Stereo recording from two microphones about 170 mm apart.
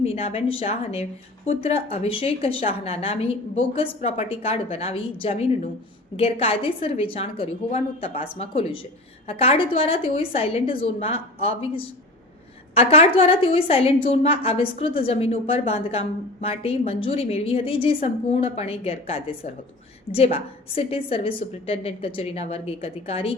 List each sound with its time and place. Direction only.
0.0 s a woman's voice: 35° left (ahead or behind)